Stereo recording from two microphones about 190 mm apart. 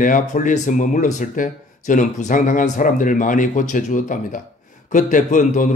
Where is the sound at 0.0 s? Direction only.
45° left (ahead or behind).